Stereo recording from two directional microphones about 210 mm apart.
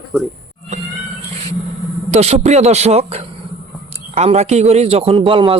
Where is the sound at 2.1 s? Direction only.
30° right (ahead or behind).